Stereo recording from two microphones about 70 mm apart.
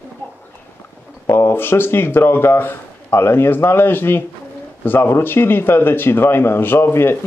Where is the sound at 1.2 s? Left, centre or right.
Left.